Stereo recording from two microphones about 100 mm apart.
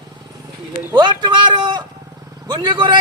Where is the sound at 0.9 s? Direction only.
45° right (ahead or behind).